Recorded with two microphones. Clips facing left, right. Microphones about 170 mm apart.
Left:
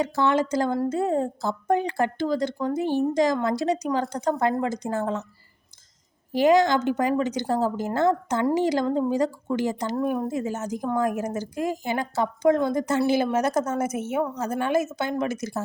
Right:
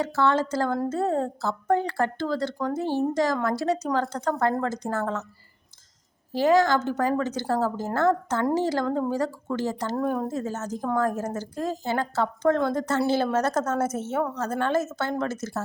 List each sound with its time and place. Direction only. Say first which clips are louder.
0.0 s a woman's voice: left 1 dB; 15° left (ahead or behind)
6.3 s a woman's voice: left 2 dB; 15° left (ahead or behind)